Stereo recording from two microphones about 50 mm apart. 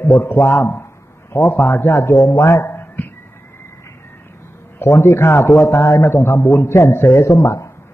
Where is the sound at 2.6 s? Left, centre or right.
Left.